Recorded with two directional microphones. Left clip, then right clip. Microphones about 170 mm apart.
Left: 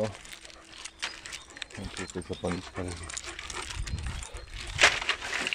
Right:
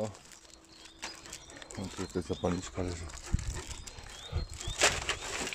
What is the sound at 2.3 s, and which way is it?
Speech, centre (ahead or behind).